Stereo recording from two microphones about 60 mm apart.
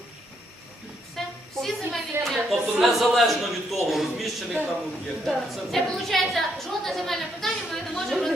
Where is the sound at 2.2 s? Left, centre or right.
Centre.